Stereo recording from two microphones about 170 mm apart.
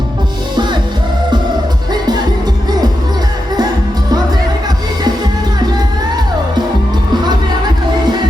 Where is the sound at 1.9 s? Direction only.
25° right (ahead or behind).